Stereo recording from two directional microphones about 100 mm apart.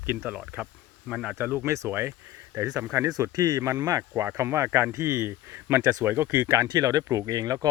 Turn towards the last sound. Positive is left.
turn(degrees=-40)  # may be behind; listen again after turning